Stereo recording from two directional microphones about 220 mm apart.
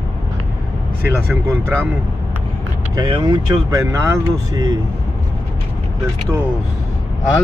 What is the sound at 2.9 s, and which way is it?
Speech, 20° right (ahead or behind).